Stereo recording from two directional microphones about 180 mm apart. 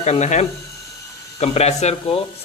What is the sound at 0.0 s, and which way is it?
Speech, 40° left (ahead or behind).